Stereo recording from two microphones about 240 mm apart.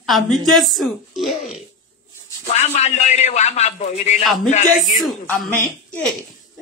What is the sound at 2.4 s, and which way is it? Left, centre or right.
Speech, left.